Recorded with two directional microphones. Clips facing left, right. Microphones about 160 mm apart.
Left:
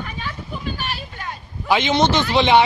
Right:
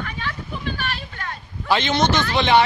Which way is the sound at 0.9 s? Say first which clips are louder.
Left 1 dB; 15° left (ahead or behind).